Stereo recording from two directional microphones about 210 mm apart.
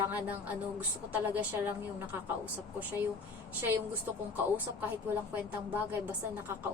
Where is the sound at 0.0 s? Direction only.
10° right (ahead or behind).